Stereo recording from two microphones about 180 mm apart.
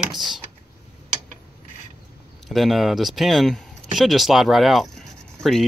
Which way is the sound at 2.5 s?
Centre (ahead or behind).